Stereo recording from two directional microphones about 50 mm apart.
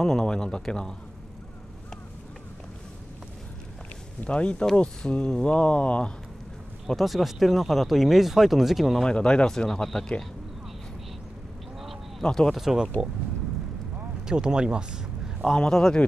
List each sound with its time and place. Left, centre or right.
0.0 s speech: centre
4.2 s speech: left
6.9 s speech: centre
9.0 s speech: centre
12.2 s speech: centre
12.5 s speech: centre
14.2 s speech: centre
15.5 s speech: centre